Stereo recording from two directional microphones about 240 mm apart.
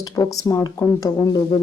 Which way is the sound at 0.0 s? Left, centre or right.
Centre.